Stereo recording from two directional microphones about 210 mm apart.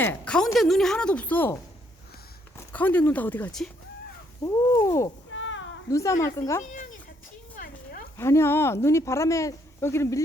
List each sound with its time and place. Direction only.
0.0 s speech: 5° left (ahead or behind)
2.7 s speech: 10° left (ahead or behind)
5.3 s cat: 65° left (ahead or behind)
5.9 s speech: 15° left (ahead or behind)
7.5 s a sound: 40° left (ahead or behind)
8.2 s speech: 10° left (ahead or behind)